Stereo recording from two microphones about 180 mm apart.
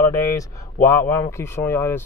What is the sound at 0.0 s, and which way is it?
Speech, 15° left (ahead or behind).